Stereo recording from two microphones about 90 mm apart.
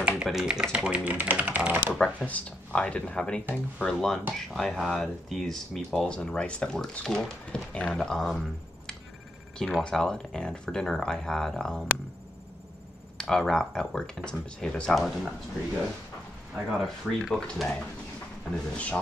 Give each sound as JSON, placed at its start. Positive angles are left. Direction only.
{"t": 0.2, "sound": "speech", "side_deg": -5}
{"t": 2.0, "sound": "speech", "side_deg": 15}
{"t": 13.2, "sound": "speech", "side_deg": 5}
{"t": 16.8, "sound": "speech", "side_deg": 5}